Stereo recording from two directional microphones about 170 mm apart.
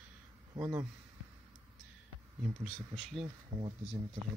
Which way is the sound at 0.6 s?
15° right (ahead or behind).